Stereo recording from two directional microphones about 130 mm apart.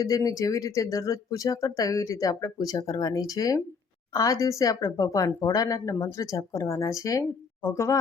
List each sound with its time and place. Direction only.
0.0 s speech: 25° left (ahead or behind)